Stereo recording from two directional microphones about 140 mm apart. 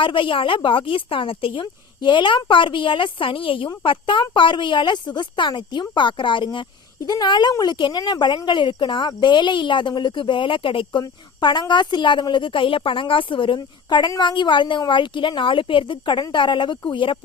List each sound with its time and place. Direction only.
0.0 s speech: 35° left (ahead or behind)